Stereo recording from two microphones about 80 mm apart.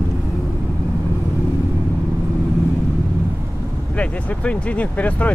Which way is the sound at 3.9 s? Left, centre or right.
Centre.